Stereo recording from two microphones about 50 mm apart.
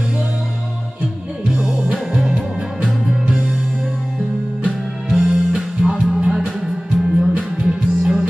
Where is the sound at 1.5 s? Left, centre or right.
Centre.